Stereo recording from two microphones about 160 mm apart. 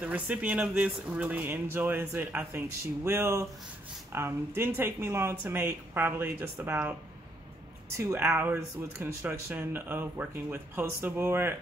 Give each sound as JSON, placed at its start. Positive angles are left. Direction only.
{"t": 0.0, "sound": "speech", "side_deg": -10}
{"t": 8.0, "sound": "speech", "side_deg": -15}